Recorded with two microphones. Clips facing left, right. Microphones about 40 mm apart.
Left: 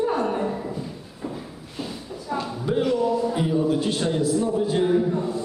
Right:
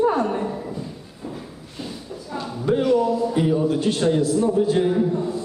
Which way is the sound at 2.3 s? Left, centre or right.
Centre.